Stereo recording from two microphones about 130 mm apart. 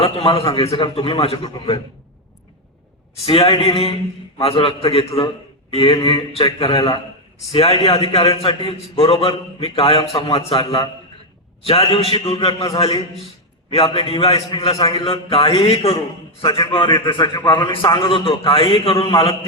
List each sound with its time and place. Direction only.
0.0 s a man's voice: 45° left (ahead or behind)
3.2 s a man's voice: 45° left (ahead or behind)
13.9 s a man's voice: 50° left (ahead or behind)